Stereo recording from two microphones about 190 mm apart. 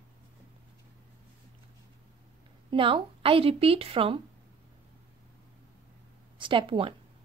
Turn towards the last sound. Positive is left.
turn(degrees=-25)  # may be behind; listen again after turning